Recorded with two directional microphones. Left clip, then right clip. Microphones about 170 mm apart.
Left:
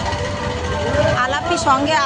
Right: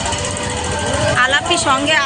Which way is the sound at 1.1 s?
5° left (ahead or behind).